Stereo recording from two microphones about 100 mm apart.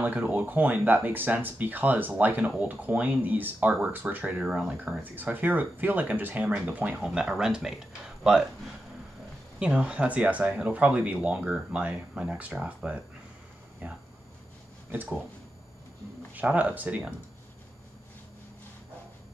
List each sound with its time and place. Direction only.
0.0 s speech: 15° right (ahead or behind)
9.6 s speech: 10° right (ahead or behind)
16.3 s speech: 15° right (ahead or behind)